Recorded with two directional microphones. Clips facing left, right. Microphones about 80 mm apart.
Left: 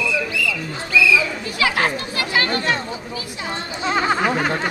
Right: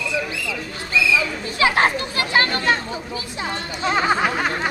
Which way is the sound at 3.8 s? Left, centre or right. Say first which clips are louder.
Even; centre.